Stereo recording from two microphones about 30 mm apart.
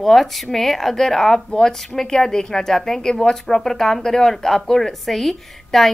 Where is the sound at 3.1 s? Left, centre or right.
Left.